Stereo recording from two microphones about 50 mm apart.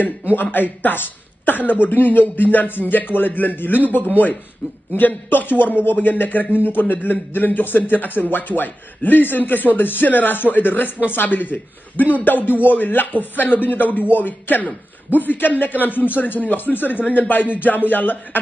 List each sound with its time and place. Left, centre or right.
0.4 s a man's voice: left